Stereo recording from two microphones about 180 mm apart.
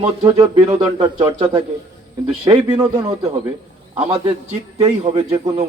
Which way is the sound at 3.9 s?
30° right (ahead or behind).